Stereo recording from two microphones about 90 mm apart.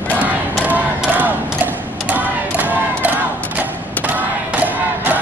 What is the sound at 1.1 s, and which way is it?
Battle cry, 20° right (ahead or behind).